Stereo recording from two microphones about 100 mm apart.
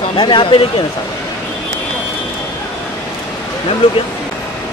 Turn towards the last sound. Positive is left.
turn(degrees=65)  # may be behind; listen again after turning